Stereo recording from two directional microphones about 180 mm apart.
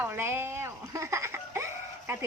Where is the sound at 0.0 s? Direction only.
15° right (ahead or behind).